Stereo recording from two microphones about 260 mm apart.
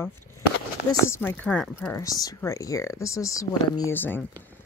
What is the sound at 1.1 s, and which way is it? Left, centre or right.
Speech, centre.